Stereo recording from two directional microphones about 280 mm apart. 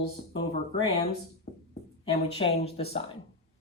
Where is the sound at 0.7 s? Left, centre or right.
Centre.